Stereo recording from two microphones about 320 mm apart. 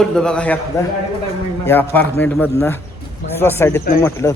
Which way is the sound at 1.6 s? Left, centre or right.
Centre.